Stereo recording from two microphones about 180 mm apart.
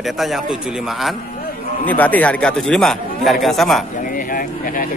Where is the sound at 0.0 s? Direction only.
Centre (ahead or behind).